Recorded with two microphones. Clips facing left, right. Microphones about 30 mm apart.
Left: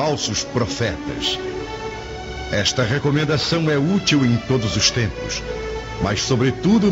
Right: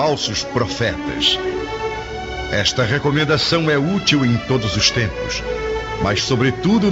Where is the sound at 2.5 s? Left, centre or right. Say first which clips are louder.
Right 2 dB; centre.